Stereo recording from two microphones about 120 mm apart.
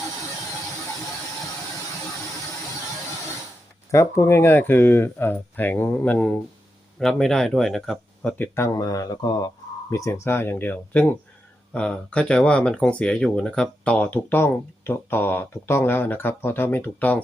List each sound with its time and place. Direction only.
3.9 s speech: 25° left (ahead or behind); by 8.4 s 5° left (ahead or behind)
8.5 s speech: 25° left (ahead or behind)